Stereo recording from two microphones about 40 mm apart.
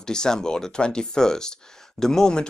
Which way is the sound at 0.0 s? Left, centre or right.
Centre.